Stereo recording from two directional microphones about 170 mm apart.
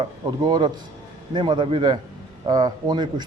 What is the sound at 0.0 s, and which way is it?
A man's voice, 25° right (ahead or behind).